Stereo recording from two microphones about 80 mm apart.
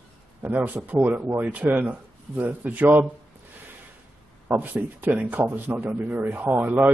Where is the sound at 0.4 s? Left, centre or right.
Right.